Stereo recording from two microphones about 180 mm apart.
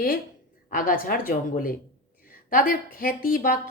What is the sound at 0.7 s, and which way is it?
A woman's voice, 50° left (ahead or behind).